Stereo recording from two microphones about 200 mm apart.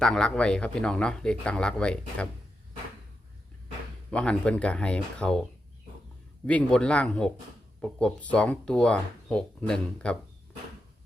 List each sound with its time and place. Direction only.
0.0 s speech: 5° left (ahead or behind)
4.1 s speech: 5° left (ahead or behind)